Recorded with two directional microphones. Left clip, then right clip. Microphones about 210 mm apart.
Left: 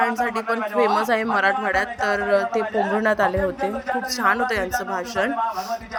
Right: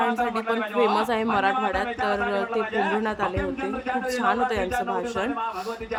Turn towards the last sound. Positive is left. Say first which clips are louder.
# left 2 dB
turn(degrees=10)  # may be behind; listen again after turning